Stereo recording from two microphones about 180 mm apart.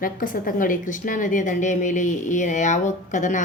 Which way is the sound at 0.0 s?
50° left (ahead or behind).